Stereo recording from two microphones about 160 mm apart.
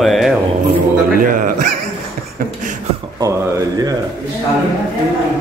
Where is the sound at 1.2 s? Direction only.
60° right (ahead or behind).